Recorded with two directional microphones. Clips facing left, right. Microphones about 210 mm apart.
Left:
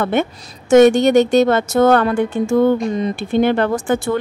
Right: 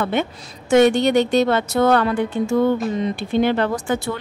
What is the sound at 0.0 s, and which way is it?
Speech, 50° left (ahead or behind).